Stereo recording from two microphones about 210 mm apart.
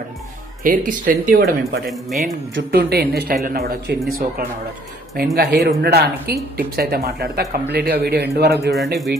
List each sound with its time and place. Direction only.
0.7 s speech: 40° right (ahead or behind)
1.9 s speech: centre (ahead or behind)
2.5 s speech: 50° right (ahead or behind)
5.1 s speech: 45° right (ahead or behind)
8.9 s speech: centre (ahead or behind)